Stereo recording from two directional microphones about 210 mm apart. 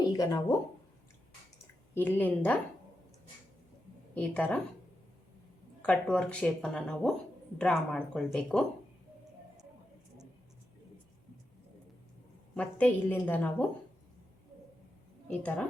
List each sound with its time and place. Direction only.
0.0 s a sound: 15° left (ahead or behind)
2.0 s a woman's voice: 10° left (ahead or behind)
4.1 s a woman's voice: 5° left (ahead or behind)
5.8 s speech: 5° left (ahead or behind)
12.5 s a woman's voice: 5° left (ahead or behind)
15.3 s speech: 5° left (ahead or behind)